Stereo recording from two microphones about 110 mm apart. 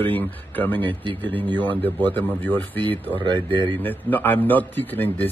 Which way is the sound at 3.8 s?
15° left (ahead or behind).